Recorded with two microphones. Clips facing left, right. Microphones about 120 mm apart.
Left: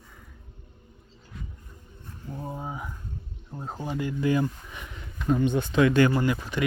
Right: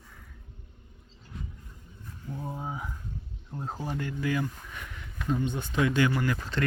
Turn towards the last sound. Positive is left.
turn(degrees=15)  # may be behind; listen again after turning